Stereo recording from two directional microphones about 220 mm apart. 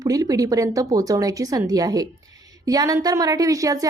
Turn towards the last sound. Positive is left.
turn(degrees=-15)  # may be behind; listen again after turning